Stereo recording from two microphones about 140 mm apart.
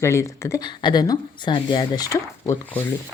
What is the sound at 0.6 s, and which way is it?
Speech, 30° left (ahead or behind).